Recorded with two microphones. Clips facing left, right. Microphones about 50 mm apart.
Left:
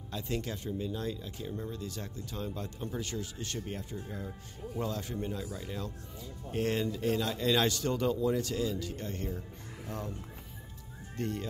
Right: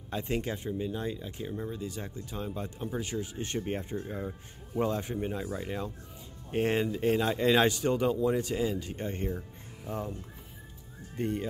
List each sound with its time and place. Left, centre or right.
0.1 s a man's voice: right
8.1 s speech: centre
8.4 s a man's voice: right
11.1 s speech: centre